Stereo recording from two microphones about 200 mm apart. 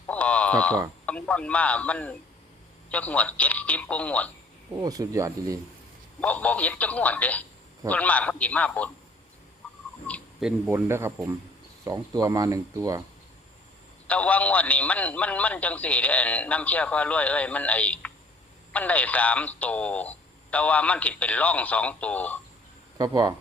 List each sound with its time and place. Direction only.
0.1 s a sound: 5° left (ahead or behind)
1.0 s speech: 5° left (ahead or behind)
4.8 s speech: 15° right (ahead or behind)
6.1 s speech: 5° left (ahead or behind)
10.1 s a sound: 5° left (ahead or behind)
10.7 s speech: 10° right (ahead or behind)
14.1 s speech: 5° left (ahead or behind)
23.0 s speech: 20° right (ahead or behind)